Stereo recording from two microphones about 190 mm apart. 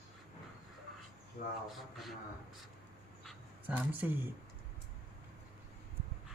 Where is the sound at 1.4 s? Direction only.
40° left (ahead or behind).